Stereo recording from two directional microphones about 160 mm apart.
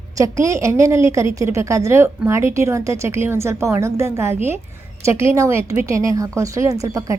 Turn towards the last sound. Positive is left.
turn(degrees=-20)  # may be behind; listen again after turning